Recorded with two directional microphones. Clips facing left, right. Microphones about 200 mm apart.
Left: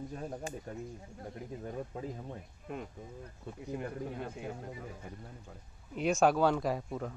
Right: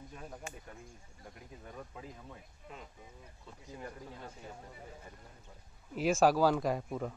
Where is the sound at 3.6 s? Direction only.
60° left (ahead or behind).